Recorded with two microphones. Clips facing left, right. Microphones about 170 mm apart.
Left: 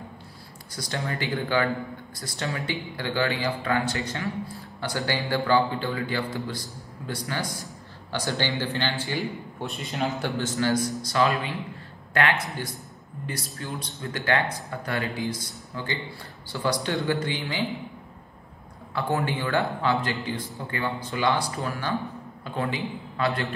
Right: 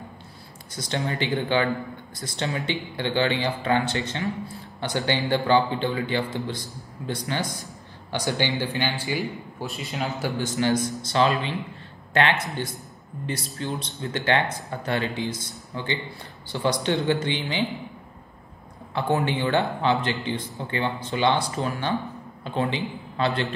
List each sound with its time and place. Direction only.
0.7 s a man's voice: 20° right (ahead or behind); by 10.3 s centre (ahead or behind)
10.4 s speech: 20° right (ahead or behind)
18.9 s a man's voice: 20° right (ahead or behind)